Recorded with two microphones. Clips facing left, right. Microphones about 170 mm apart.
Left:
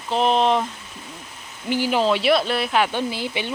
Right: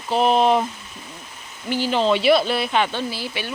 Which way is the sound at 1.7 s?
10° left (ahead or behind).